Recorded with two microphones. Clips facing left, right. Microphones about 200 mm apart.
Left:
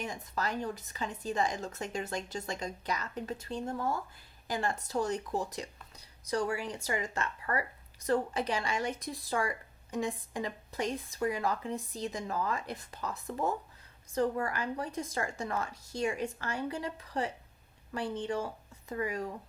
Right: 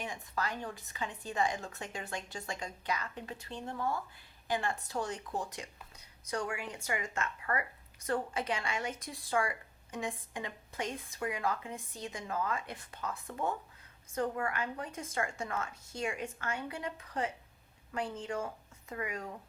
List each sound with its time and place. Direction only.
0.0 s speech: 40° left (ahead or behind)